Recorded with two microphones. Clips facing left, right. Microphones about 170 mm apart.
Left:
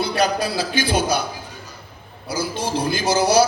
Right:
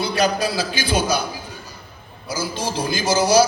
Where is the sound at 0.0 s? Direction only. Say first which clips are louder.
Even; 60° left (ahead or behind).